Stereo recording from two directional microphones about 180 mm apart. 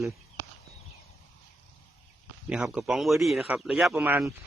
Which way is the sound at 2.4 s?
5° right (ahead or behind).